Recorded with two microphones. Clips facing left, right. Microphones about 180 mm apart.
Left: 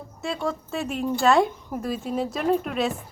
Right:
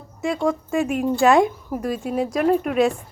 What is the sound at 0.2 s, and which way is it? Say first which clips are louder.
Speech: right 6 dB; 15° right (ahead or behind).